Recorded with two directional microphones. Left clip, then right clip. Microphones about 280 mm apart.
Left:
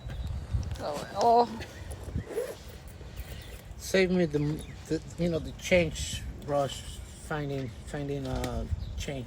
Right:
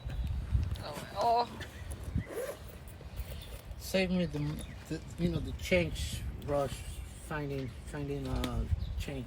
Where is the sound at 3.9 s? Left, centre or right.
Left.